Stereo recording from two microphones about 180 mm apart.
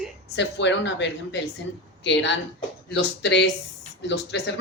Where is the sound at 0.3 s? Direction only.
80° left.